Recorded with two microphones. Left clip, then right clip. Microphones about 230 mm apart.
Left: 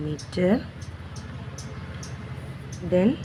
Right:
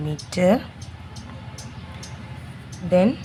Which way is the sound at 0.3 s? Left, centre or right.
Right.